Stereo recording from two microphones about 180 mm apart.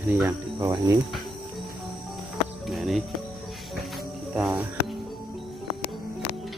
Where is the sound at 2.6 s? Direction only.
Centre (ahead or behind).